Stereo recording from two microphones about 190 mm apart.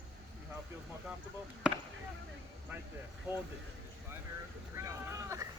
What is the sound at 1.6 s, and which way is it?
Speech, 5° right (ahead or behind).